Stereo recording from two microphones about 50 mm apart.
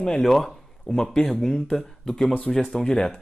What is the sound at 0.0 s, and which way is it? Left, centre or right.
Speech, centre.